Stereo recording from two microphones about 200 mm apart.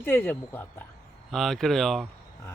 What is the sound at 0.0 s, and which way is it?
Speech, 10° left (ahead or behind).